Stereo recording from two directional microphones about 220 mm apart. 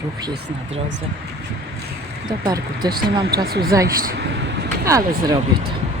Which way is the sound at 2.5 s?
15° right (ahead or behind).